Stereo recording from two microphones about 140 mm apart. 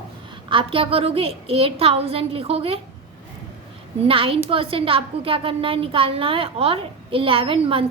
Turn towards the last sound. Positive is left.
turn(degrees=-40)  # may be behind; listen again after turning